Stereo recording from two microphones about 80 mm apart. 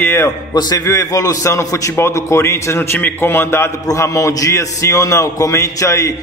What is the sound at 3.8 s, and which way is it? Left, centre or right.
A man's voice, left.